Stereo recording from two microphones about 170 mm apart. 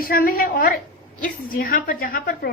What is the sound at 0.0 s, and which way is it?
A woman's voice, 60° left (ahead or behind).